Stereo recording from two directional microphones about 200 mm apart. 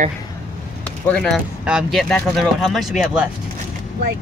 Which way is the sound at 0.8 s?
5° left (ahead or behind).